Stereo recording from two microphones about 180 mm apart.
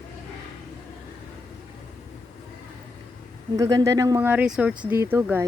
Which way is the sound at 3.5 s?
20° right (ahead or behind).